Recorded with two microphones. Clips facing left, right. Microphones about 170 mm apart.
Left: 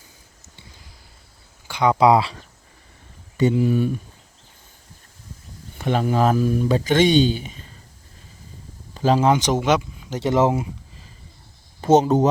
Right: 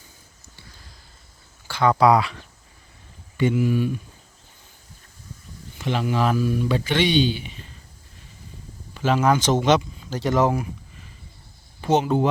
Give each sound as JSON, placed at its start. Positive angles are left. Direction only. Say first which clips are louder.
{"t": 1.6, "sound": "speech", "louder": "left 1 dB", "side_deg": 15}
{"t": 5.7, "sound": "speech", "louder": "left 3 dB", "side_deg": 50}
{"t": 9.0, "sound": "speech", "louder": "left 3 dB", "side_deg": 35}
{"t": 9.3, "sound": "speech", "louder": "even", "side_deg": 15}
{"t": 10.1, "sound": "speech", "louder": "left 2 dB", "side_deg": 25}
{"t": 11.8, "sound": "speech", "louder": "left 4 dB", "side_deg": 40}